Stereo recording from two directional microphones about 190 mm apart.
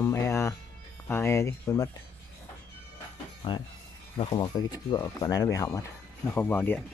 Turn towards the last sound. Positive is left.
turn(degrees=10)  # may be behind; listen again after turning